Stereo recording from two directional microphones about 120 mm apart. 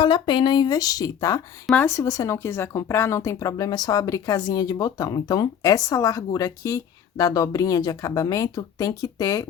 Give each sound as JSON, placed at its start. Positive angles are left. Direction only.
{"t": 0.0, "sound": "speech", "side_deg": 35}